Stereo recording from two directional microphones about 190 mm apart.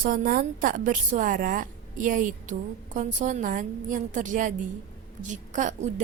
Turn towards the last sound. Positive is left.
turn(degrees=-40)  # may be behind; listen again after turning